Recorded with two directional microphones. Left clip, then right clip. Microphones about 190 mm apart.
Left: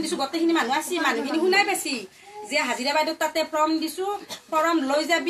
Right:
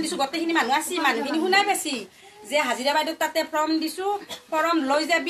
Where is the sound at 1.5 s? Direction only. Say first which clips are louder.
Right 1 dB; 55° right (ahead or behind).